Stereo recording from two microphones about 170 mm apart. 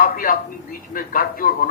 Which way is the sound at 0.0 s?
55° left (ahead or behind).